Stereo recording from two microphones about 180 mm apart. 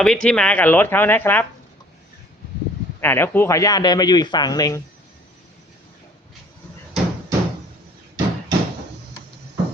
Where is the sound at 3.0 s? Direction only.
10° left (ahead or behind).